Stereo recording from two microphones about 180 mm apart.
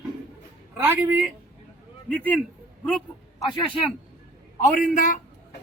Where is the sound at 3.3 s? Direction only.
25° left (ahead or behind).